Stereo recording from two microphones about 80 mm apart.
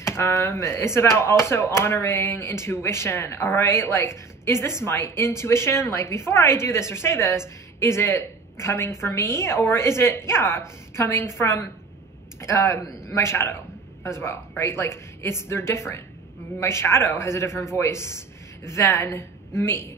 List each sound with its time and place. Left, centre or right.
0.0 s a woman's voice: left